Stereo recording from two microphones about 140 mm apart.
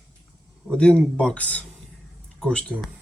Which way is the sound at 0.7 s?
5° left (ahead or behind).